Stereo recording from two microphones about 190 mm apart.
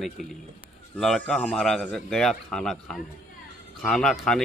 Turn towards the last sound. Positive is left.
turn(degrees=0)  # may be behind; listen again after turning